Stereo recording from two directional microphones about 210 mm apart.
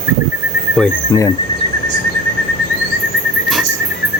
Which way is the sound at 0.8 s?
Centre (ahead or behind).